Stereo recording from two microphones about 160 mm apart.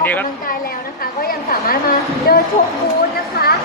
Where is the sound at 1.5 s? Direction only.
65° left (ahead or behind).